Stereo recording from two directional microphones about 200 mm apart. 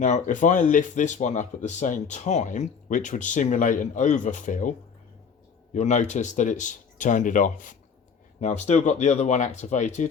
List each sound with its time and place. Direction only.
0.0 s speech: 40° left (ahead or behind)
5.7 s speech: 35° left (ahead or behind)